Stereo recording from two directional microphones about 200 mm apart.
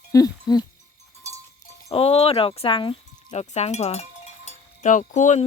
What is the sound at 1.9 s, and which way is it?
Speech, 30° left (ahead or behind).